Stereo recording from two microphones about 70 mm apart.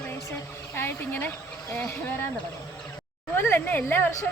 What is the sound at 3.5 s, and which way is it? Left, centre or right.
Speech, left.